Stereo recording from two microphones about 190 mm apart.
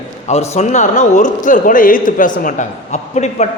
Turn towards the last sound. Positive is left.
turn(degrees=35)  # may be behind; listen again after turning